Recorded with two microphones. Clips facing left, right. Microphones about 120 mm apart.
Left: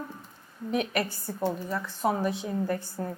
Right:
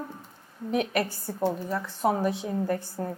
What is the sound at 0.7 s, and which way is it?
A woman's voice, 50° right (ahead or behind).